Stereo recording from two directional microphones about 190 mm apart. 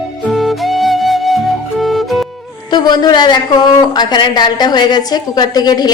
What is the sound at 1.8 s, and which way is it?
Music, centre (ahead or behind).